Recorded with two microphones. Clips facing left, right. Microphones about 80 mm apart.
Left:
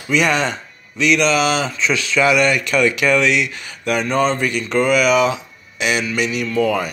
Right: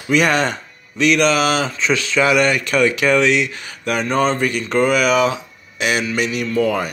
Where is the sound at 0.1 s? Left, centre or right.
Right.